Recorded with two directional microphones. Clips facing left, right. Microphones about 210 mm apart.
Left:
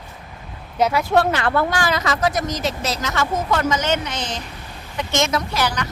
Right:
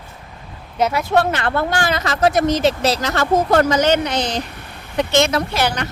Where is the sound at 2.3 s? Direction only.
30° right (ahead or behind).